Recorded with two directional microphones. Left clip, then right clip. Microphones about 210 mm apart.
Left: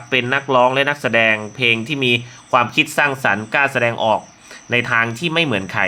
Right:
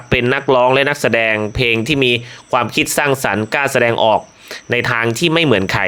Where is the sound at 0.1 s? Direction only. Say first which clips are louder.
Right 3 dB; 45° right (ahead or behind).